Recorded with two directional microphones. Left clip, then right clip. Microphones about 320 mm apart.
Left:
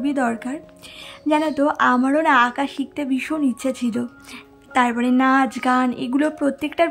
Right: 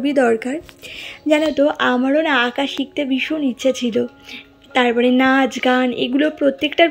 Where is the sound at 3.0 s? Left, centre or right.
Left.